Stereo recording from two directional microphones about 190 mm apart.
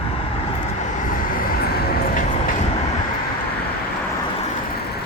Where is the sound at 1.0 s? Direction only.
45° left (ahead or behind).